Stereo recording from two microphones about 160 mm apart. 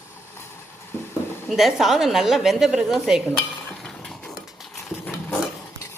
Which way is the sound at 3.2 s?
10° left (ahead or behind).